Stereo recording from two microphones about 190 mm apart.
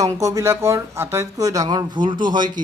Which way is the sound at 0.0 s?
15° right (ahead or behind).